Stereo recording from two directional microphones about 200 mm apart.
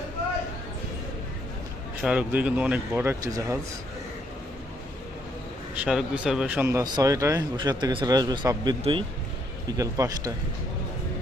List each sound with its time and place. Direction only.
2.0 s speech: 5° right (ahead or behind)
5.7 s speech: 5° right (ahead or behind)